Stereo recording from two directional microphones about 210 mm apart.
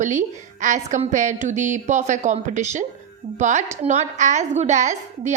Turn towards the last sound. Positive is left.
turn(degrees=-35)  # may be behind; listen again after turning